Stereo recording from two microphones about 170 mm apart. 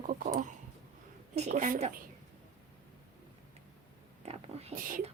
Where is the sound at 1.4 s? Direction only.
45° right (ahead or behind).